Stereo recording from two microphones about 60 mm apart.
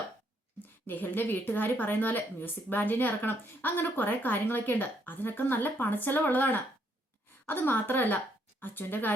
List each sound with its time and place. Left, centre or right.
0.6 s speech: left